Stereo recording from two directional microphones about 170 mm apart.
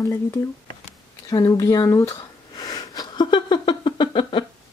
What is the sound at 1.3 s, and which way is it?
Sniff, 20° left (ahead or behind).